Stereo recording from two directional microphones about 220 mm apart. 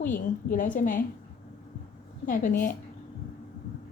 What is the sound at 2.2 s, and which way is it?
Speech, 40° left (ahead or behind).